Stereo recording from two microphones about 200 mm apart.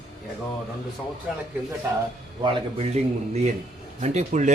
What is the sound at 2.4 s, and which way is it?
A man's voice, 30° right (ahead or behind).